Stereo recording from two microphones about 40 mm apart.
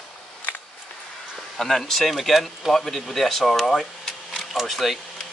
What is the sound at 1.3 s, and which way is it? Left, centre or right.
Speech, centre.